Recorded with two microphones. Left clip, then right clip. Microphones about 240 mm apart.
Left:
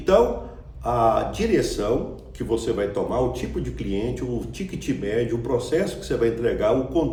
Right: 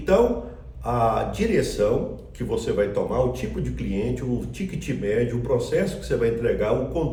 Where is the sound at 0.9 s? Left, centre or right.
Centre.